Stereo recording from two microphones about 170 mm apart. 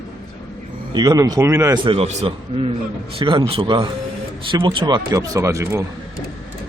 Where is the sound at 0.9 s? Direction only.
20° right (ahead or behind).